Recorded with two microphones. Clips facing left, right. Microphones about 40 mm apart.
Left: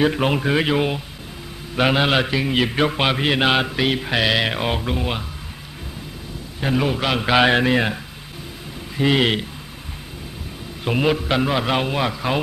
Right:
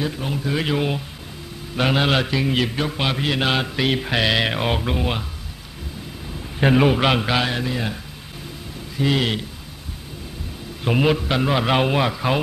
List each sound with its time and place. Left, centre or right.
0.0 s speech: left
0.7 s a man's voice: centre
2.7 s mantra: left
3.7 s a man's voice: centre
6.6 s a man's voice: right
7.4 s speech: left
8.9 s mantra: left
10.8 s a man's voice: centre